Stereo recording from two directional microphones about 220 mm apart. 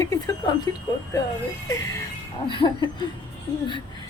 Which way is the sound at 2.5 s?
20° left (ahead or behind).